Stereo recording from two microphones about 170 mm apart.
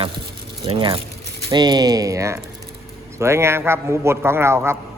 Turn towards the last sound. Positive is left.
turn(degrees=-15)  # may be behind; listen again after turning